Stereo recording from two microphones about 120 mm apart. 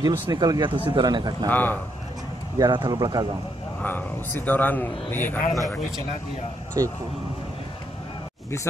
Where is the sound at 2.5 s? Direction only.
35° right (ahead or behind).